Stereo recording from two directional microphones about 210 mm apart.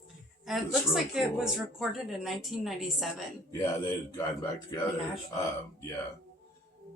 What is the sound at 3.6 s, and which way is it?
Speech, 15° left (ahead or behind).